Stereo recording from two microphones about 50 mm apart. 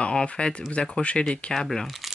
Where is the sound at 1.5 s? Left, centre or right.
Centre.